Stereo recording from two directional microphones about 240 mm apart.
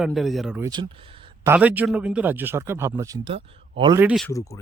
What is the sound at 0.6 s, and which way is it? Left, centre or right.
Speech, centre.